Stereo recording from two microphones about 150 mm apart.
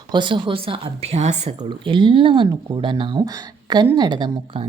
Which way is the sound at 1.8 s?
35° right (ahead or behind).